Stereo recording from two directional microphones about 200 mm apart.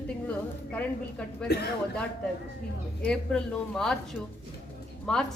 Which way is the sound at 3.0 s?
5° left (ahead or behind).